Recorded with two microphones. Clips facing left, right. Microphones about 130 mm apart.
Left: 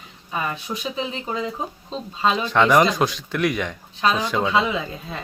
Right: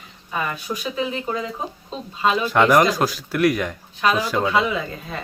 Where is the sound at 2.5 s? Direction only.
5° right (ahead or behind).